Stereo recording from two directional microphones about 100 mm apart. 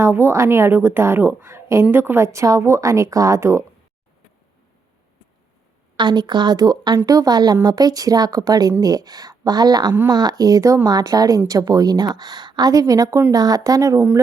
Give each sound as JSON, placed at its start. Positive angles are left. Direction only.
{"t": 0.0, "sound": "a woman's voice", "side_deg": -25}
{"t": 6.0, "sound": "speech", "side_deg": -45}